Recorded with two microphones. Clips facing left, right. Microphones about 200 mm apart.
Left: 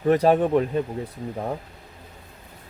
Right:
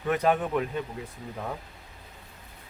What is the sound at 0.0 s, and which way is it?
Speech, 35° left (ahead or behind).